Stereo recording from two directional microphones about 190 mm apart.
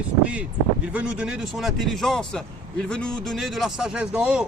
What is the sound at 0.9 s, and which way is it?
Speech, 5° right (ahead or behind).